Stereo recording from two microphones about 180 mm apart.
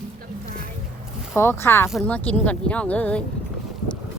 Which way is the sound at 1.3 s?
15° left (ahead or behind).